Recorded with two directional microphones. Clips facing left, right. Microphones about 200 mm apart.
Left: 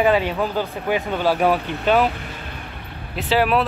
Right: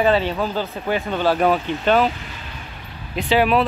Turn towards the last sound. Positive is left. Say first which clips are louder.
# right 2 dB
turn(degrees=0)  # may be behind; listen again after turning